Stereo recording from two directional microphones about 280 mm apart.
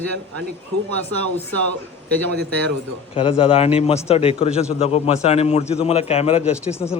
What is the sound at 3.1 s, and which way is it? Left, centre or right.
A man's voice, centre.